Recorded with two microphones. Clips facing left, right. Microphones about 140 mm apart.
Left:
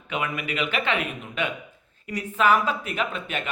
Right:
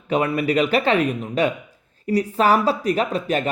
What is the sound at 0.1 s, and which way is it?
Speech, 35° right (ahead or behind).